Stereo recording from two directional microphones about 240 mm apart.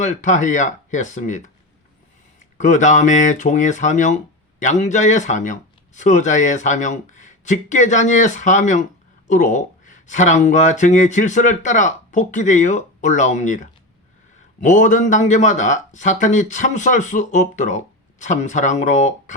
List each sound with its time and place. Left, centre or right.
0.0 s speech: left
2.6 s speech: left